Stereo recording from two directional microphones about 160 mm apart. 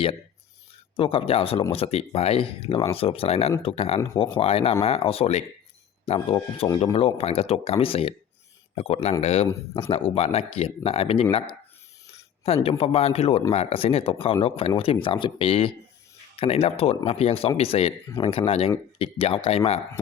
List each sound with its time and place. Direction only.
0.9 s speech: 35° left (ahead or behind)
6.1 s speech: 25° left (ahead or behind)
6.7 s speech: 35° left (ahead or behind)
12.6 s speech: 35° left (ahead or behind)